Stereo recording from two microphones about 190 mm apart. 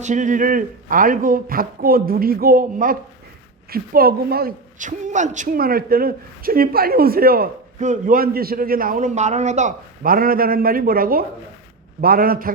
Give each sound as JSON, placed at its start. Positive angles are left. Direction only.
{"t": 0.0, "sound": "a woman's voice", "side_deg": -40}